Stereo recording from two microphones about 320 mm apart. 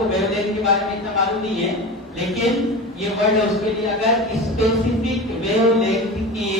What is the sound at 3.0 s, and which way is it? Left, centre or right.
A man's voice, centre.